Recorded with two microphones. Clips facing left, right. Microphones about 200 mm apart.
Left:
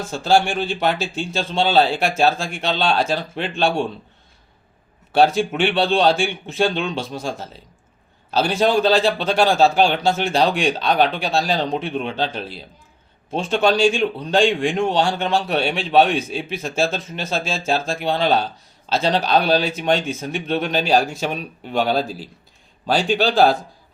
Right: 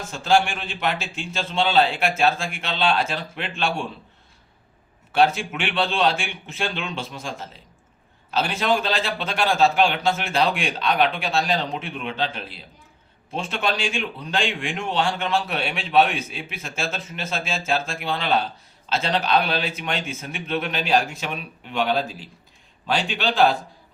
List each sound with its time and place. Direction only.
0.1 s a man's voice: 35° left (ahead or behind)
5.1 s a man's voice: 35° left (ahead or behind)